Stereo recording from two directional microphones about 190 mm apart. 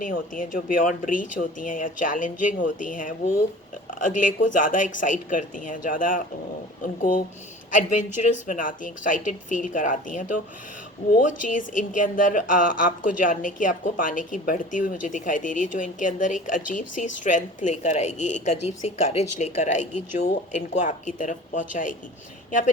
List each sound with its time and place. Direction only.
0.0 s a woman's voice: 45° left (ahead or behind)
7.7 s a woman's voice: 40° left (ahead or behind)